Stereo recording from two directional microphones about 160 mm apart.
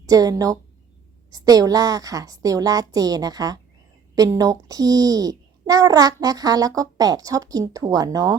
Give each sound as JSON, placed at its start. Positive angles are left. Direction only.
{"t": 0.0, "sound": "a child's voice", "side_deg": -20}